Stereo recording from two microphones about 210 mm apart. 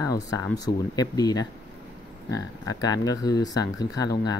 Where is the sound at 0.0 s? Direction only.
15° left (ahead or behind).